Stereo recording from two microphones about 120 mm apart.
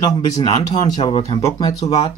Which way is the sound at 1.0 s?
55° left (ahead or behind).